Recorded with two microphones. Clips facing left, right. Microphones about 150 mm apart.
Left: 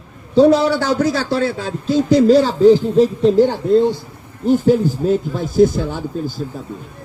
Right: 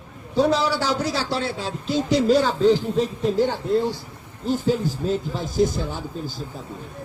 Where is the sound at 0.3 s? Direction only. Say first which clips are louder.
Left 8 dB; 55° left (ahead or behind); by 3.3 s 30° left (ahead or behind).